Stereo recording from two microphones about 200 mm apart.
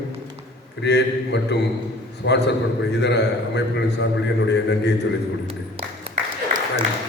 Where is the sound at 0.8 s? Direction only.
60° left (ahead or behind).